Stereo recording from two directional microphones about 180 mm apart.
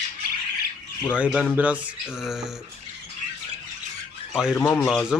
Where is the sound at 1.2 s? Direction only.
5° right (ahead or behind).